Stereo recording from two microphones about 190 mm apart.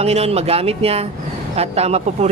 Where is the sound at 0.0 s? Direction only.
35° right (ahead or behind).